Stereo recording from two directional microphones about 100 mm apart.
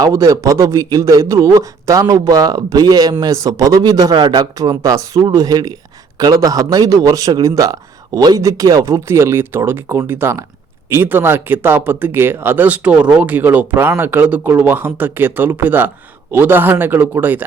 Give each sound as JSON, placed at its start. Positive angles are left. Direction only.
{"t": 0.0, "sound": "a man's voice", "side_deg": -35}